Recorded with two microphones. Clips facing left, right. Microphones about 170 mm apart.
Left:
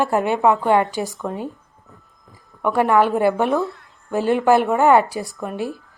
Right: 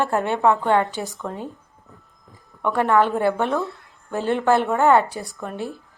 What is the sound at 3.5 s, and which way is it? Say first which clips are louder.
Speech: left 4 dB; centre (ahead or behind).